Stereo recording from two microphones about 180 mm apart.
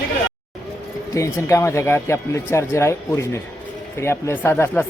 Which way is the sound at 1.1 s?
15° left (ahead or behind).